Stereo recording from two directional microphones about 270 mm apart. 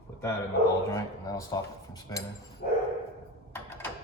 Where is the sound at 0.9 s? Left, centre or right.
Centre.